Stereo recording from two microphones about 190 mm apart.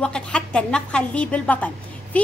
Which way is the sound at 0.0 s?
5° left (ahead or behind).